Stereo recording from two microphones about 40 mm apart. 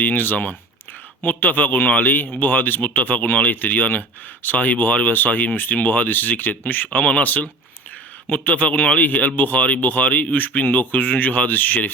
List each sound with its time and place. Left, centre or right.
0.0 s a man's voice: left
6.9 s a man's voice: left